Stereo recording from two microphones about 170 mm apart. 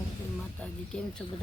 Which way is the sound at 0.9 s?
5° left (ahead or behind).